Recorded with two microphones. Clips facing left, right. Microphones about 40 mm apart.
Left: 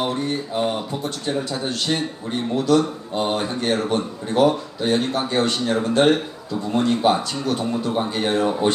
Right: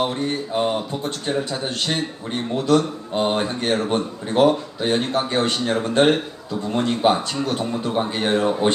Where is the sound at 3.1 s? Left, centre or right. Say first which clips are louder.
Right 2 dB; right.